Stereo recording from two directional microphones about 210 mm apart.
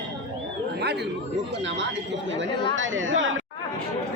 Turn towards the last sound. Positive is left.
turn(degrees=-65)  # may be behind; listen again after turning